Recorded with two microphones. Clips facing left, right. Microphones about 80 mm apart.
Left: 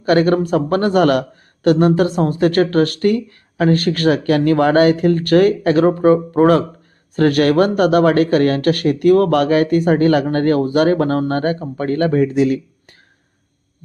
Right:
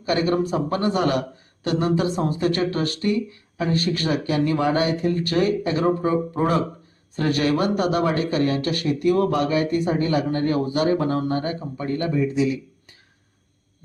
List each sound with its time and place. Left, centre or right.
0.0 s speech: left